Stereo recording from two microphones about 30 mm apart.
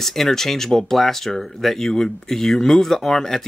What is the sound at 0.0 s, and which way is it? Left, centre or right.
Speech, centre.